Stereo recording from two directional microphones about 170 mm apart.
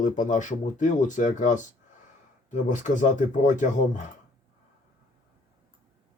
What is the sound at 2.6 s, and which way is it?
Speech, 50° left (ahead or behind).